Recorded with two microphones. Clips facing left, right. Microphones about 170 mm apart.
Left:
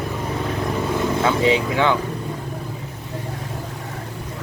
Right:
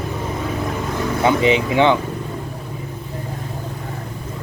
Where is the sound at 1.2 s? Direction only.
20° right (ahead or behind).